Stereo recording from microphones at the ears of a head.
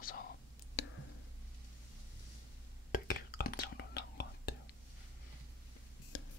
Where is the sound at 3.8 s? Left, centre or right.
Left.